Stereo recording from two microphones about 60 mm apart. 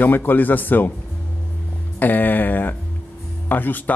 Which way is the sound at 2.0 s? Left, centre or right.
Left.